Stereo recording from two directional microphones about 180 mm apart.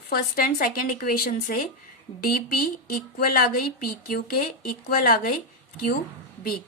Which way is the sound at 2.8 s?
55° left (ahead or behind).